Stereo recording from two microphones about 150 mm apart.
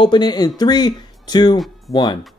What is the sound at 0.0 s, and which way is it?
Speech, 30° left (ahead or behind).